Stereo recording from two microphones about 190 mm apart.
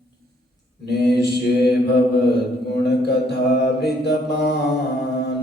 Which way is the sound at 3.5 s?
60° left (ahead or behind).